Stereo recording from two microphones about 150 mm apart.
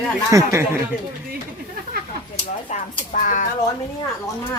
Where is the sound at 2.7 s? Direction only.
60° left (ahead or behind).